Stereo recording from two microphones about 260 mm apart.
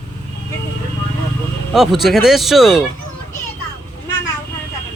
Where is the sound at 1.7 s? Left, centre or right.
Centre.